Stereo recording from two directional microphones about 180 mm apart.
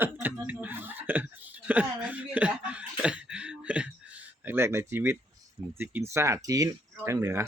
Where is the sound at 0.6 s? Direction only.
10° right (ahead or behind).